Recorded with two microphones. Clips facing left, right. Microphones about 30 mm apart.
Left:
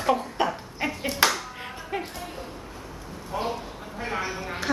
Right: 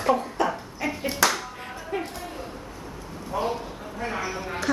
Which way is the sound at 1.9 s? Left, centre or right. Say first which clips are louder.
Right 1 dB; left.